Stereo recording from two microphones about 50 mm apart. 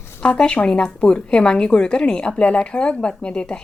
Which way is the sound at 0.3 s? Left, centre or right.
Left.